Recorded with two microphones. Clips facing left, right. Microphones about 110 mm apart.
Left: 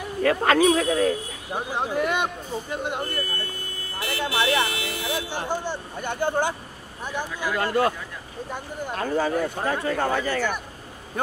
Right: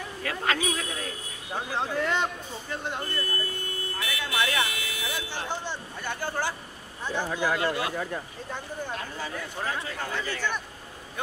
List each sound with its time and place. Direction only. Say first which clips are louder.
0.2 s speech: left 10 dB; 50° left (ahead or behind)
1.5 s speech: left 3 dB; 15° left (ahead or behind)
4.2 s buzzer: left 5 dB; 25° left (ahead or behind)
4.8 s vehicle: left 6 dB; 65° left (ahead or behind)
5.3 s speech: left 5 dB; 15° left (ahead or behind)
7.2 s speech: right 2 dB; 50° right (ahead or behind)
7.5 s speech: left 6 dB; 50° left (ahead or behind)
8.5 s speech: left 4 dB; 15° left (ahead or behind)
8.9 s speech: left 11 dB; 55° left (ahead or behind)